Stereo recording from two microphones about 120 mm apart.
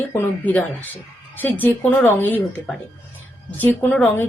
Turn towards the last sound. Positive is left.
turn(degrees=15)  # may be behind; listen again after turning